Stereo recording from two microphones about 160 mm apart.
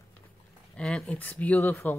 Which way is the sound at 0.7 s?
5° left (ahead or behind).